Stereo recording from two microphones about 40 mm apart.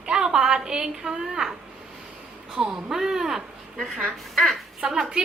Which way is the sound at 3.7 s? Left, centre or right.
Centre.